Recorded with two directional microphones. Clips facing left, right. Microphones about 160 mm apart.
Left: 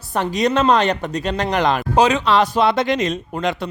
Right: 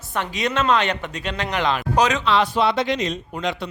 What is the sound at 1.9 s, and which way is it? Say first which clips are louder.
Speech: left 4 dB; 30° left (ahead or behind).